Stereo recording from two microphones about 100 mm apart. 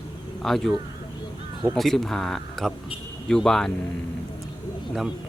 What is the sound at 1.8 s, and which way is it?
Speech, 5° left (ahead or behind).